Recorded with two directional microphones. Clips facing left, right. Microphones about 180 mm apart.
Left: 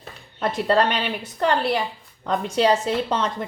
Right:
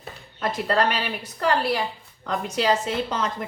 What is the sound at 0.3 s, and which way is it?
Speech, 30° left (ahead or behind).